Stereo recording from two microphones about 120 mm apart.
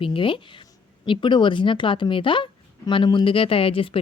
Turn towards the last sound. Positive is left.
turn(degrees=50)  # may be behind; listen again after turning